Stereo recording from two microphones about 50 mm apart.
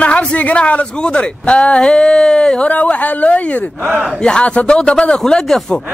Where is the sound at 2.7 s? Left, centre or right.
Left.